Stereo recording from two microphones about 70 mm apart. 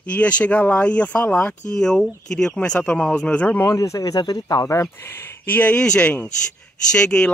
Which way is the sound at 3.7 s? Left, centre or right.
Left.